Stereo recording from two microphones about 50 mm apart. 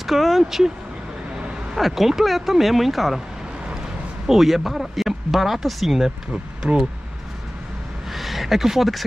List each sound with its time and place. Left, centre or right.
0.0 s speech: centre
1.8 s speech: centre
4.3 s speech: centre
6.3 s speech: centre
8.1 s a sound: centre